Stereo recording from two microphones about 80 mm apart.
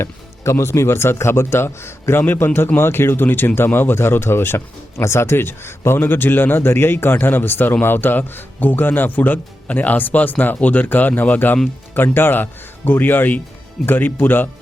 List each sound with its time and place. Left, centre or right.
0.0 s speech: left